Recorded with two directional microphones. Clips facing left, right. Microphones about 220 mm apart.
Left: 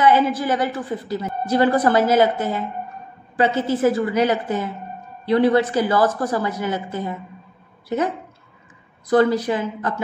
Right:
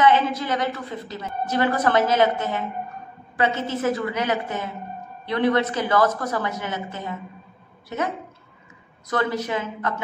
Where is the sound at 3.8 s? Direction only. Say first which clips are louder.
Left 6 dB; 30° left (ahead or behind).